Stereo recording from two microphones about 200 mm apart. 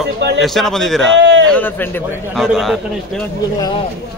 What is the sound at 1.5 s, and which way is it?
Speech, 10° left (ahead or behind).